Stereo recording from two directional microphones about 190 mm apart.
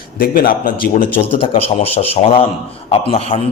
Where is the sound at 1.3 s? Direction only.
30° left (ahead or behind).